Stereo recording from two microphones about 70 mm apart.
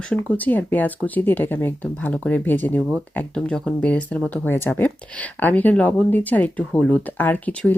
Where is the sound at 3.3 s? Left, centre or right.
Centre.